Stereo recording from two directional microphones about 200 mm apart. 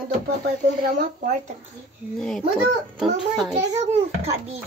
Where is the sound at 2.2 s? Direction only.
5° left (ahead or behind).